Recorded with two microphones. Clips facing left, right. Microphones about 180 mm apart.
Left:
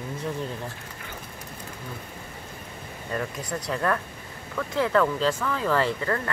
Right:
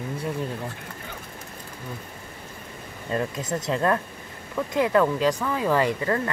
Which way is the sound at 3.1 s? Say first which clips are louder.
Right 4 dB; 25° right (ahead or behind).